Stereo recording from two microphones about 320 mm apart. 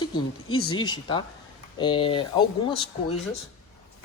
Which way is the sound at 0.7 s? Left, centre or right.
Centre.